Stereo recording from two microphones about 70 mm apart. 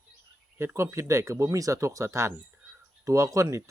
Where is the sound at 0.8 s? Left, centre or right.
Right.